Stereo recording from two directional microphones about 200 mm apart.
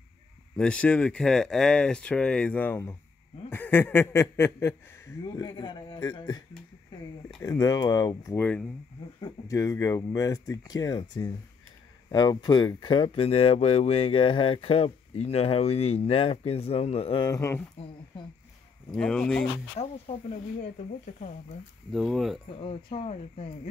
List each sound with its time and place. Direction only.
0.6 s speech: 5° left (ahead or behind); by 6.4 s 20° left (ahead or behind)
7.4 s speech: 15° left (ahead or behind)
18.9 s speech: 5° left (ahead or behind)
19.8 s speech: 30° left (ahead or behind)
21.9 s speech: centre (ahead or behind)
22.8 s speech: 30° left (ahead or behind)